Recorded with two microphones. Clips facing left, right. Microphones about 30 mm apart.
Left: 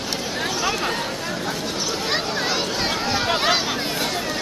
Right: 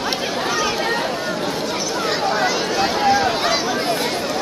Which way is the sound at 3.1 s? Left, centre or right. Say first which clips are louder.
Right 2 dB; centre.